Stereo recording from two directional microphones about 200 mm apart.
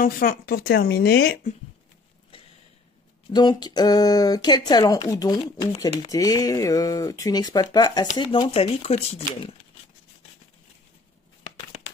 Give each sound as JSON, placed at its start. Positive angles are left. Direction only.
{"t": 0.0, "sound": "speech", "side_deg": 45}
{"t": 3.3, "sound": "speech", "side_deg": 20}
{"t": 6.1, "sound": "speech", "side_deg": 15}